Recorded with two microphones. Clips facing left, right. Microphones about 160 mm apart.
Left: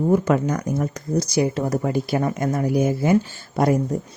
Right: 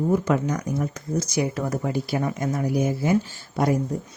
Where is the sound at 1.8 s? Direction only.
50° left (ahead or behind).